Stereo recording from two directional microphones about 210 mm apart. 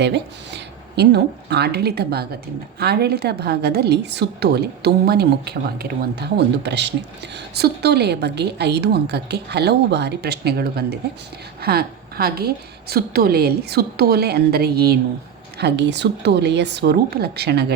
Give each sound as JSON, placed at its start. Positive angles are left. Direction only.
{"t": 0.0, "sound": "a woman's voice", "side_deg": -55}